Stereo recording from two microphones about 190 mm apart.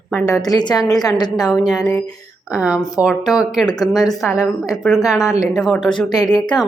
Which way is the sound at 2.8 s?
20° left (ahead or behind).